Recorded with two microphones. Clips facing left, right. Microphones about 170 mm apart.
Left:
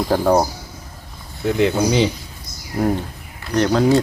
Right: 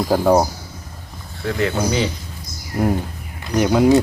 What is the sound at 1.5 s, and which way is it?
Speech, 20° left (ahead or behind).